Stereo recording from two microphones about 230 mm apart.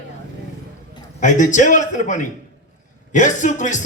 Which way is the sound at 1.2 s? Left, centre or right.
Left.